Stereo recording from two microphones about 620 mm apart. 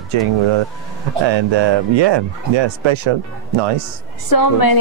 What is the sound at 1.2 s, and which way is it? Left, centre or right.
Speech, right.